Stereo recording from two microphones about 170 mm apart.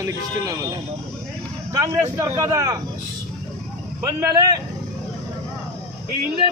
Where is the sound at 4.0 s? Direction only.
20° right (ahead or behind).